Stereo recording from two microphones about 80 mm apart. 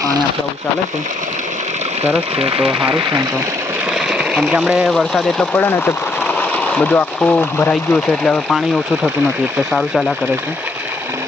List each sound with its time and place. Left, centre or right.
4.2 s speech: centre
4.9 s speech: centre
5.5 s speech: left
6.2 s a sound: centre
7.2 s speech: centre